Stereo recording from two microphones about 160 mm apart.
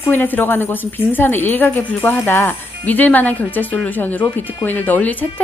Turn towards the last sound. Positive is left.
turn(degrees=10)  # may be behind; listen again after turning